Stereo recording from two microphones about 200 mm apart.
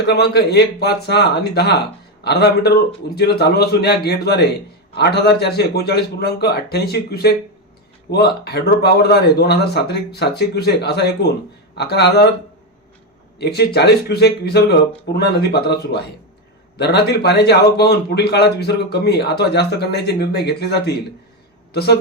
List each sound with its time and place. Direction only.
0.0 s a man's voice: 55° left (ahead or behind)
13.4 s a man's voice: 55° left (ahead or behind)